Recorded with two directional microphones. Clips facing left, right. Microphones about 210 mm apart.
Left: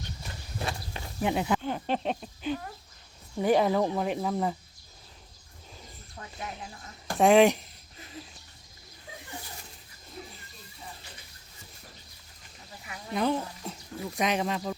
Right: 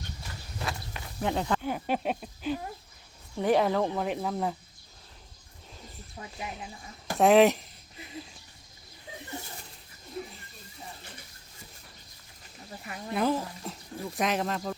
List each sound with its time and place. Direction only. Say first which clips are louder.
0.6 s walk: left 1 dB; 30° left (ahead or behind)
1.2 s speech: left 2 dB; 10° left (ahead or behind)
1.6 s a sound: even; 10° right (ahead or behind)
3.3 s speech: left 1 dB; 5° left (ahead or behind)
6.3 s speech: even; 5° right (ahead or behind)
13.1 s speech: even; 5° right (ahead or behind)